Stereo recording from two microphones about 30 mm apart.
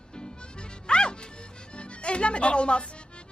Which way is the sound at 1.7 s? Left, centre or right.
Left.